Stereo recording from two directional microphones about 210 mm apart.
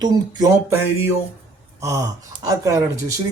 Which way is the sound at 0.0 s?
20° right (ahead or behind).